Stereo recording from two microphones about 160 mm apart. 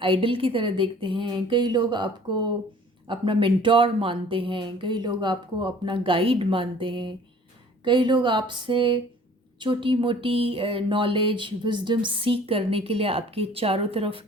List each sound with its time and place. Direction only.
0.0 s speech: 35° right (ahead or behind)